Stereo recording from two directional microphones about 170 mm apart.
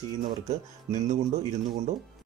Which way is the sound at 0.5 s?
45° right (ahead or behind).